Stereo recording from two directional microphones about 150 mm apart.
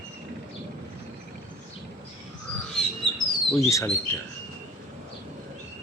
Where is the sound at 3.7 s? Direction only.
15° left (ahead or behind).